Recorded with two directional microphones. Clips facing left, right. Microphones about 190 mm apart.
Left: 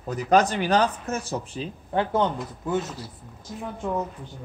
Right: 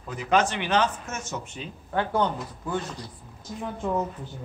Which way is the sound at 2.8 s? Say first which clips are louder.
Left 3 dB; 5° left (ahead or behind).